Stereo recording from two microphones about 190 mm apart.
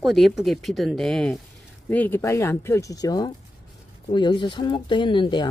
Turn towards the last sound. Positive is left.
turn(degrees=25)  # may be behind; listen again after turning